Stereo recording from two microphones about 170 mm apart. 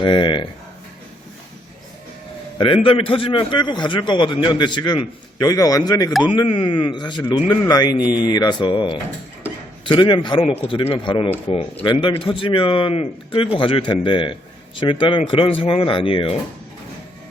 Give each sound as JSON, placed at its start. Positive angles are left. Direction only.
{"t": 0.0, "sound": "a man's voice", "side_deg": 25}
{"t": 2.8, "sound": "a man's voice", "side_deg": 30}
{"t": 7.9, "sound": "speech", "side_deg": -5}
{"t": 8.2, "sound": "a man's voice", "side_deg": 25}